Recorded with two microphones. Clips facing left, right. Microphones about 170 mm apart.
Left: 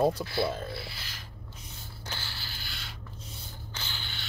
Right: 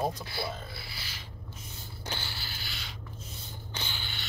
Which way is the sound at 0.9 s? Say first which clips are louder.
Left 1 dB; 5° right (ahead or behind).